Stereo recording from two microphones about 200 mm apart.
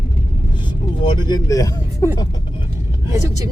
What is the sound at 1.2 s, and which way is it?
Speech, 20° left (ahead or behind).